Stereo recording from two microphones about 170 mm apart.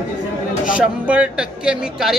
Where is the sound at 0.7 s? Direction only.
5° right (ahead or behind).